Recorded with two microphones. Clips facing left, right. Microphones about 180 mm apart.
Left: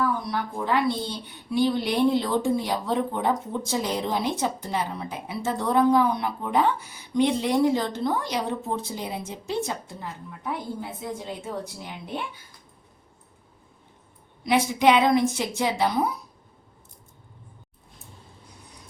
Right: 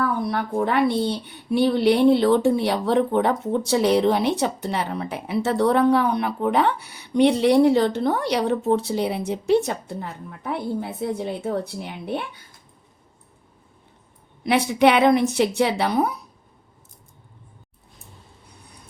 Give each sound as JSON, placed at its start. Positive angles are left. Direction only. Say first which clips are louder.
{"t": 0.0, "sound": "a sound", "louder": "right 3 dB", "side_deg": -60}
{"t": 0.6, "sound": "speech", "louder": "right 4 dB", "side_deg": -60}
{"t": 14.4, "sound": "a woman's voice", "louder": "right 3 dB", "side_deg": -65}